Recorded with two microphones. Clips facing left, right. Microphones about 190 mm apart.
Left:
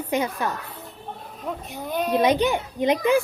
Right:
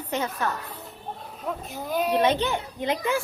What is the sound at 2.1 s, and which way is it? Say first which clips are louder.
A woman's voice: left 4 dB; 15° left (ahead or behind).